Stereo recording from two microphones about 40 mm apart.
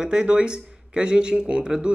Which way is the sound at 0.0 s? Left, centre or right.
Right.